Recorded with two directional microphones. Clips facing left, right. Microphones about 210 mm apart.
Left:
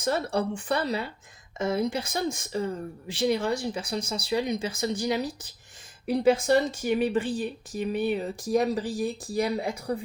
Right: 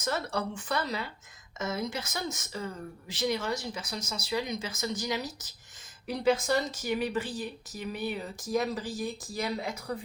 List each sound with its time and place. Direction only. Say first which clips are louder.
0.0 s speech: left 5 dB; 30° left (ahead or behind)